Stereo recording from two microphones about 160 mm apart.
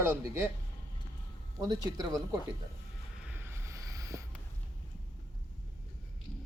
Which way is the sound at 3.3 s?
15° right (ahead or behind).